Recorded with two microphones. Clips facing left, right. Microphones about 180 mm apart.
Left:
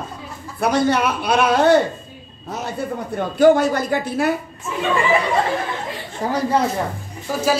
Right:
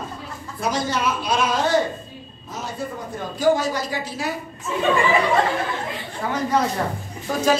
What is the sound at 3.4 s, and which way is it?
Speech, 55° left (ahead or behind).